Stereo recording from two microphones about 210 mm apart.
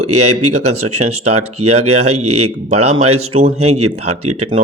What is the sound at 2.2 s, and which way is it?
Speech, 90° right.